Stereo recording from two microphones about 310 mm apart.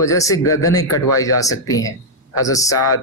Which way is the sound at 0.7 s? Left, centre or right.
Centre.